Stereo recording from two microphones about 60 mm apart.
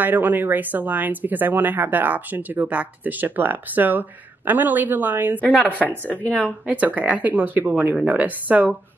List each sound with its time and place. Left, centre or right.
0.0 s speech: right
5.7 s a woman's voice: left
6.7 s speech: right